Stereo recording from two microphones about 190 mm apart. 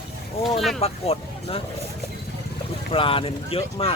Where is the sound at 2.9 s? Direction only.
30° left (ahead or behind).